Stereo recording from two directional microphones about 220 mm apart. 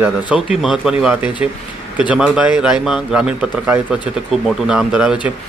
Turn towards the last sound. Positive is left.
turn(degrees=-5)  # may be behind; listen again after turning